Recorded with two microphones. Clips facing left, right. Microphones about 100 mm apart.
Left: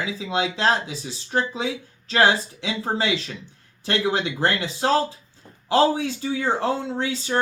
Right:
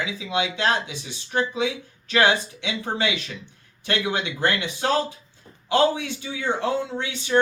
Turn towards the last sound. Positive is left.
turn(degrees=35)  # may be behind; listen again after turning